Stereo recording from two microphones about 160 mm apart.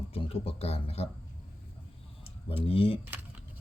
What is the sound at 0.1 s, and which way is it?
Speech, 35° left (ahead or behind).